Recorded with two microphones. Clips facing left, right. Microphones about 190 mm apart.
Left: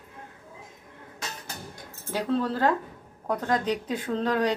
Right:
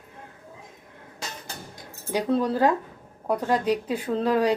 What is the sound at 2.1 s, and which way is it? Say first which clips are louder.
A woman's voice: right 3 dB; 15° right (ahead or behind).